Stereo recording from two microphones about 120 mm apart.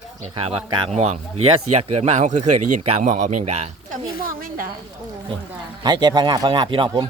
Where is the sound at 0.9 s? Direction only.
65° right (ahead or behind).